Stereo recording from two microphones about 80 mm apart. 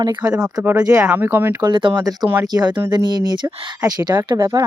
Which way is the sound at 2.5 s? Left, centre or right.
Right.